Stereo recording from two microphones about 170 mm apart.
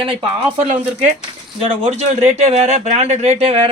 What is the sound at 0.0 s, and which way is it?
A man's voice, 30° right (ahead or behind).